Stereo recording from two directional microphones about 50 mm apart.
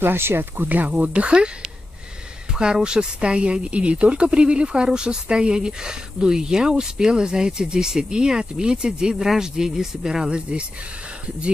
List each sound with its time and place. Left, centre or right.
0.0 s speech: right; by 10.6 s centre